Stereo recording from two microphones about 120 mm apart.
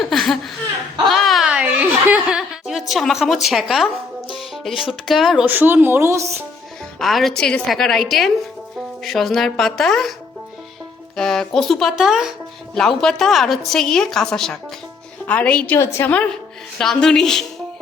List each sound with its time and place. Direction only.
0.0 s a sound: centre (ahead or behind)
1.0 s chuckle: centre (ahead or behind)
2.6 s a woman's voice: centre (ahead or behind)
5.5 s speech: 15° right (ahead or behind)
7.0 s a woman's voice: centre (ahead or behind)
11.2 s a woman's voice: 5° left (ahead or behind)
16.7 s a woman's voice: 5° left (ahead or behind)